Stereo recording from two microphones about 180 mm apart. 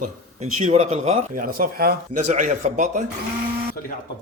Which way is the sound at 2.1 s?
40° right (ahead or behind).